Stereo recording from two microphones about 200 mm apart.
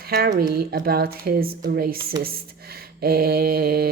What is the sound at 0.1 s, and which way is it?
Speech, 50° right (ahead or behind).